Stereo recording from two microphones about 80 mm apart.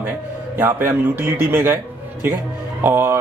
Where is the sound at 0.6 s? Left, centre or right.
Right.